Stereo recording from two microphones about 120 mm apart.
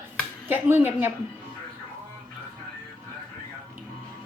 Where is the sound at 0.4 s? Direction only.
20° right (ahead or behind).